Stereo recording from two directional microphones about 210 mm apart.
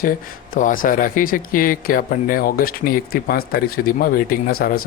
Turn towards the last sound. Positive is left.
turn(degrees=45)  # may be behind; listen again after turning